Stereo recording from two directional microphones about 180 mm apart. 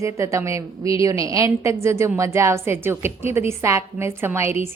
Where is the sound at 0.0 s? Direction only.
15° right (ahead or behind).